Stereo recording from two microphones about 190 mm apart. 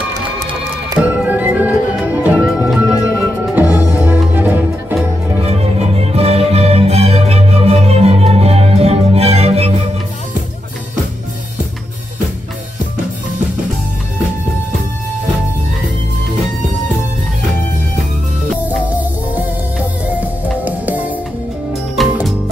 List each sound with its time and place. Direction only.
0.9 s music: 5° right (ahead or behind)
5.5 s music: 35° right (ahead or behind)
18.9 s music: 10° right (ahead or behind)